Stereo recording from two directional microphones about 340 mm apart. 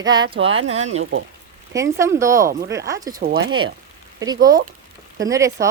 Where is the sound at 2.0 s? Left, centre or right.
Centre.